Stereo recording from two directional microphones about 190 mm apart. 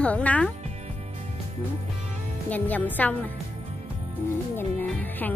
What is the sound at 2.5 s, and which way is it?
Speech, 10° left (ahead or behind).